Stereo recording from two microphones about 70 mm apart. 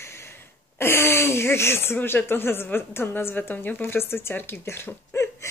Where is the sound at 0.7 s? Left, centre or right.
Left.